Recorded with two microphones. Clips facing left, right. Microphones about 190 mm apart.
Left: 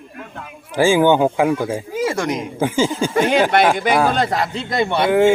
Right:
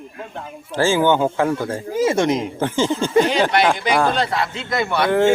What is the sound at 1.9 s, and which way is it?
Speech, 20° right (ahead or behind).